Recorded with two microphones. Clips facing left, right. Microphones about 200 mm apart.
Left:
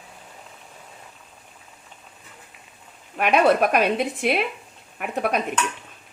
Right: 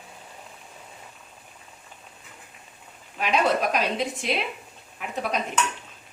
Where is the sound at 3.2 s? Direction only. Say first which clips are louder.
Left 5 dB; 60° left (ahead or behind).